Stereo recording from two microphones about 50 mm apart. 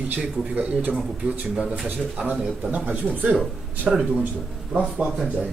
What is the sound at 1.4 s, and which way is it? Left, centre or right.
Speech, centre.